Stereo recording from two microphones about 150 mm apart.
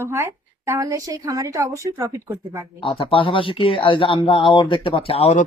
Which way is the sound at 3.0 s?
35° left (ahead or behind).